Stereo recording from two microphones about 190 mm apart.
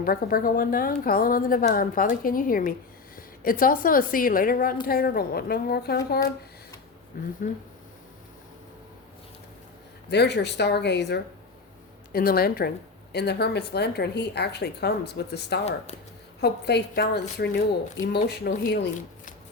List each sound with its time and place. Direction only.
0.0 s a woman's voice: 50° left (ahead or behind)
7.1 s a woman's voice: 50° left (ahead or behind)
10.1 s a woman's voice: 60° left (ahead or behind)
12.1 s a woman's voice: 55° left (ahead or behind)